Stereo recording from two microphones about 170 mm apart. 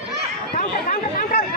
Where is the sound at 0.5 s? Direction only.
50° left (ahead or behind).